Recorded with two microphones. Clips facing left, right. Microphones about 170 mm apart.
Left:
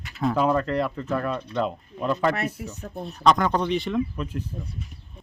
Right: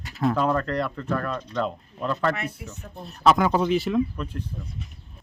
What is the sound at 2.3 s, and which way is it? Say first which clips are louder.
Speech: left 4 dB; 35° left (ahead or behind).